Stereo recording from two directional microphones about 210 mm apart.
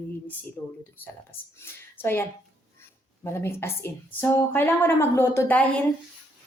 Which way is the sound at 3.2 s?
10° left (ahead or behind).